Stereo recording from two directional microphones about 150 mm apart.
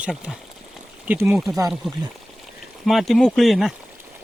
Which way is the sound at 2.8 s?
Centre (ahead or behind).